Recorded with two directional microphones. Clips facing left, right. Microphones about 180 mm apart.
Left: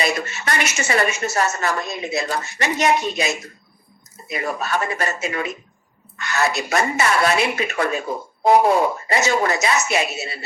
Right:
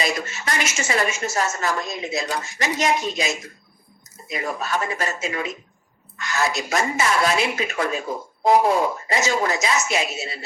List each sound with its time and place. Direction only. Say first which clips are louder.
0.0 s a woman's voice: left 2 dB; 65° left (ahead or behind)